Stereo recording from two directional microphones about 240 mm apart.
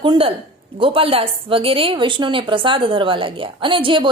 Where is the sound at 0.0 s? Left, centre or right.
Right.